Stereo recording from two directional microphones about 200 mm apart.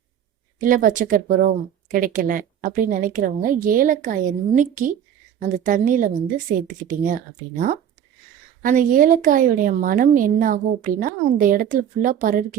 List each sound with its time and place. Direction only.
0.6 s a woman's voice: 40° right (ahead or behind)
8.6 s a woman's voice: 40° right (ahead or behind)